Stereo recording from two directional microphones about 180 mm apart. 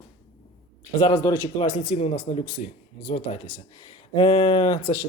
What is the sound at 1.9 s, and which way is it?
Speech, 40° left (ahead or behind).